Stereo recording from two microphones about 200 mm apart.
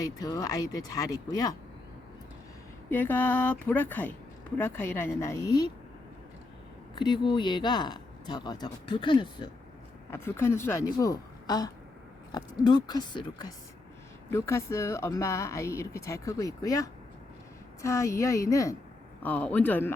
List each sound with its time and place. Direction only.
0.0 s speech: 20° left (ahead or behind)
2.9 s speech: 10° left (ahead or behind)
6.9 s speech: 20° left (ahead or behind)
10.1 s speech: 10° left (ahead or behind)